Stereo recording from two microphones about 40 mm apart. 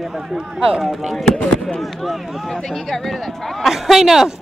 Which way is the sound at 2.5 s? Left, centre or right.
Centre.